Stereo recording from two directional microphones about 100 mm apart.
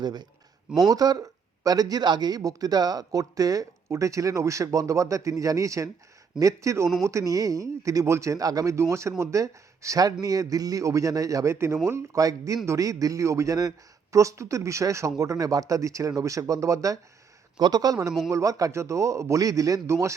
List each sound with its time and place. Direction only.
0.0 s speech: 45° right (ahead or behind); by 20.1 s 30° right (ahead or behind)